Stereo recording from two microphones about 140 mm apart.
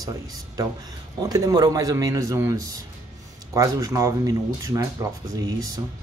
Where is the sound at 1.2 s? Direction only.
25° right (ahead or behind).